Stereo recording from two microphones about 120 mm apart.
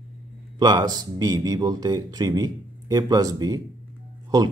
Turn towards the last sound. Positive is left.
turn(degrees=-30)  # may be behind; listen again after turning